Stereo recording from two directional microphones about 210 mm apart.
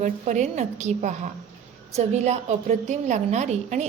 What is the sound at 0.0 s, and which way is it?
A woman's voice, 35° right (ahead or behind).